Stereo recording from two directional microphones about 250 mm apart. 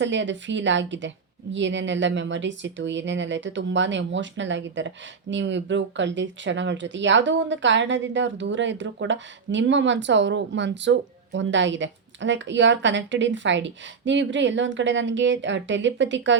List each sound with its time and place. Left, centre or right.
0.0 s speech: right